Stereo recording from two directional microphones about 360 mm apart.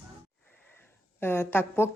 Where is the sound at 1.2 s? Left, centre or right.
Centre.